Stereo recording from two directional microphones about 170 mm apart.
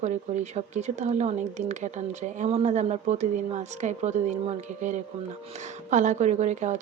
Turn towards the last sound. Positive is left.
turn(degrees=-45)  # may be behind; listen again after turning